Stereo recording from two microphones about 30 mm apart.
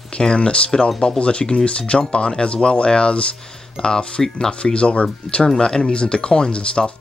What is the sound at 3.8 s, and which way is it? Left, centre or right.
Speech, left.